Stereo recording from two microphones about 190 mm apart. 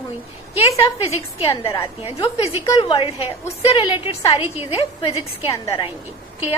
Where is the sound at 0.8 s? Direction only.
30° left (ahead or behind).